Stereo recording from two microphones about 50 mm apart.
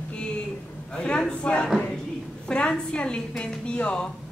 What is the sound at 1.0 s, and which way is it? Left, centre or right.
A man's voice, centre.